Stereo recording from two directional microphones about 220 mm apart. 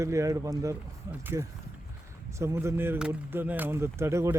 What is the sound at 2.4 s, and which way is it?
Speech, 10° right (ahead or behind).